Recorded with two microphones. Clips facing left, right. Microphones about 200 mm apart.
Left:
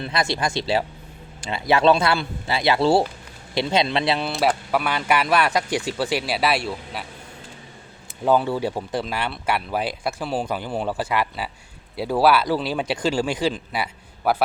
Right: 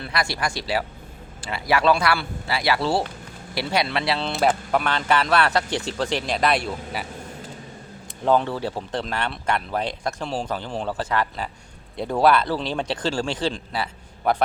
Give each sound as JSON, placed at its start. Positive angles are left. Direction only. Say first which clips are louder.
{"t": 0.0, "sound": "speech", "louder": "left 3 dB", "side_deg": 20}
{"t": 4.3, "sound": "speech", "louder": "even", "side_deg": 0}
{"t": 8.2, "sound": "speech", "louder": "left 1 dB", "side_deg": 5}